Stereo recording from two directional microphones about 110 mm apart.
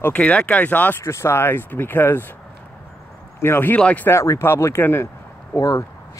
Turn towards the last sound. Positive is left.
turn(degrees=30)  # may be behind; listen again after turning